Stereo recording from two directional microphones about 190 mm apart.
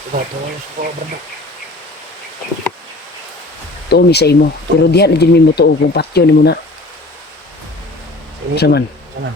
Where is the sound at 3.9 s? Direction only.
60° left (ahead or behind).